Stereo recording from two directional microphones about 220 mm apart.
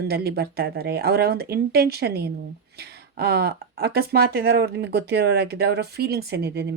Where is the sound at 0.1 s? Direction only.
45° right (ahead or behind).